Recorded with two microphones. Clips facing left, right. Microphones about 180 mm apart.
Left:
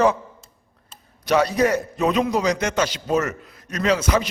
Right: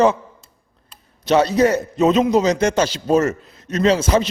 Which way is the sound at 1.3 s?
25° right (ahead or behind).